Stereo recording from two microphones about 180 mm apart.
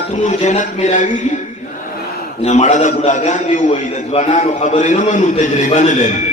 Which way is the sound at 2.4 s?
40° left (ahead or behind).